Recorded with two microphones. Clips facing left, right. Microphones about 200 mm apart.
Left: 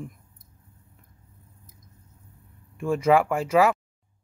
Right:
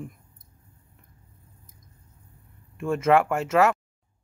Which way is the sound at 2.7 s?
Centre (ahead or behind).